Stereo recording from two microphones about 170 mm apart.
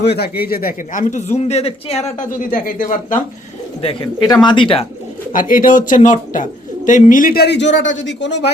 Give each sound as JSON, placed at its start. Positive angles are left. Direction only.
{"t": 0.0, "sound": "speech", "side_deg": 70}
{"t": 4.4, "sound": "speech", "side_deg": 30}
{"t": 5.3, "sound": "speech", "side_deg": 55}